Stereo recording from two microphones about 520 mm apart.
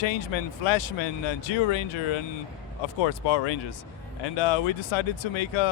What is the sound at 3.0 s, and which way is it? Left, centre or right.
Speech, left.